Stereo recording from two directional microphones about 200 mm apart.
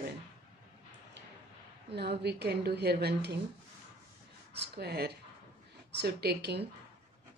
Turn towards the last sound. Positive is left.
turn(degrees=-55)  # may be behind; listen again after turning